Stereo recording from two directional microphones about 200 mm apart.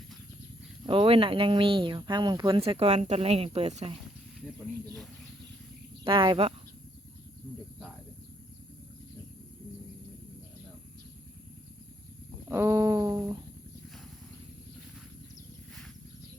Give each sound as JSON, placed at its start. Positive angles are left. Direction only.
{"t": 0.9, "sound": "speech", "side_deg": -25}
{"t": 6.1, "sound": "speech", "side_deg": -25}
{"t": 12.5, "sound": "speech", "side_deg": -15}